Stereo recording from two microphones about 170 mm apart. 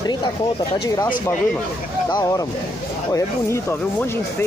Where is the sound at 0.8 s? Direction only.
20° left (ahead or behind).